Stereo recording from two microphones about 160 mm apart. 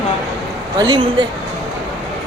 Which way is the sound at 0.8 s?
25° right (ahead or behind).